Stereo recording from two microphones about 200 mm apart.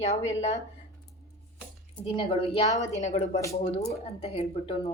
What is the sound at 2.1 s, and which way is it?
A woman's voice, 30° left (ahead or behind).